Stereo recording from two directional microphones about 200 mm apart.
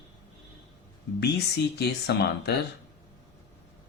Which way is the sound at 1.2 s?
55° left (ahead or behind).